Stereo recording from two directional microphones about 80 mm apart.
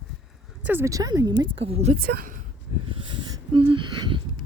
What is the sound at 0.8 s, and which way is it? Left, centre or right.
Speech, right.